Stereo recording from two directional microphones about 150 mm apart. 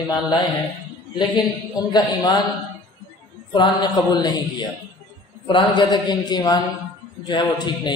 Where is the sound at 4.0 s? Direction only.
30° left (ahead or behind).